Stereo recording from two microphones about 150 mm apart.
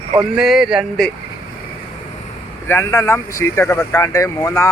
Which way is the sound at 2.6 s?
20° left (ahead or behind).